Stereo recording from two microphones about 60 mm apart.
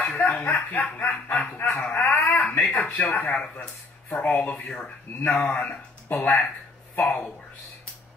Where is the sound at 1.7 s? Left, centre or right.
Left.